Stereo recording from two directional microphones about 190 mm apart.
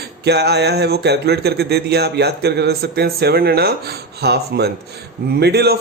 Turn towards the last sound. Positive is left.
turn(degrees=-60)  # may be behind; listen again after turning